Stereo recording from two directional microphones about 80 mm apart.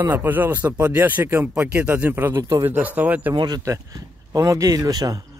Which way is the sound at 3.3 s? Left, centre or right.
Right.